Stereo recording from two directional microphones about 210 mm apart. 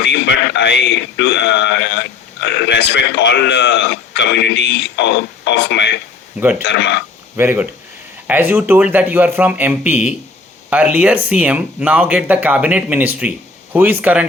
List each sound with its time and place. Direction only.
0.0 s a man's voice: 55° left (ahead or behind)
7.3 s speech: 10° right (ahead or behind)